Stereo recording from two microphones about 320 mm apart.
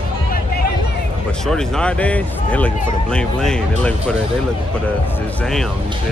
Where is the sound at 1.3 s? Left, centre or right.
Centre.